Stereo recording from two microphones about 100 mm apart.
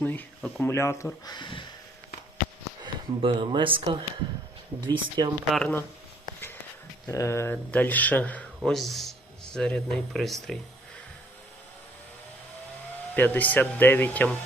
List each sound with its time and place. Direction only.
0.0 s speech: 15° left (ahead or behind)
1.2 s speech: 45° left (ahead or behind)
3.2 s speech: 65° right (ahead or behind)
4.8 s speech: 45° right (ahead or behind)
5.5 s speech: 5° left (ahead or behind)
7.1 s speech: 30° left (ahead or behind)
7.5 s speech: 15° left (ahead or behind)
8.7 s speech: centre (ahead or behind)
13.1 s speech: 20° left (ahead or behind)